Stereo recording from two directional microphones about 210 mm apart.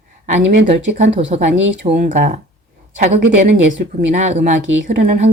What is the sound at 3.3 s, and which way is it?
Speech, 60° right (ahead or behind).